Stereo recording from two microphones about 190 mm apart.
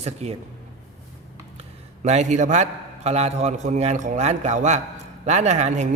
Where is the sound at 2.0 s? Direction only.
35° right (ahead or behind).